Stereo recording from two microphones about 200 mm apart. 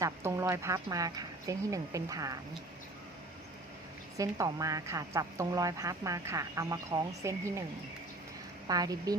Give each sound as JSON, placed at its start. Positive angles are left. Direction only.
{"t": 0.0, "sound": "a woman's voice", "side_deg": -15}
{"t": 4.2, "sound": "a woman's voice", "side_deg": -15}
{"t": 8.6, "sound": "speech", "side_deg": -20}